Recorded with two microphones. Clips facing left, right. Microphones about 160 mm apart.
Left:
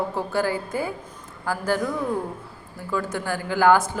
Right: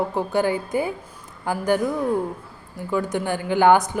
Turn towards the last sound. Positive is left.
turn(degrees=-20)  # may be behind; listen again after turning